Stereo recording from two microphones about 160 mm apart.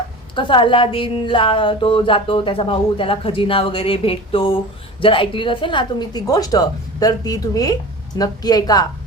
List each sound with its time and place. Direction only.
0.3 s a woman's voice: 30° left (ahead or behind)